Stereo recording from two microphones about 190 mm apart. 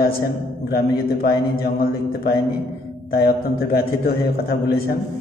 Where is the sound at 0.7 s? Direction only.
55° left (ahead or behind).